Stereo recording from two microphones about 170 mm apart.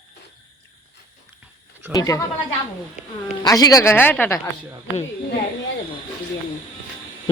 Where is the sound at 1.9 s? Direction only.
20° left (ahead or behind).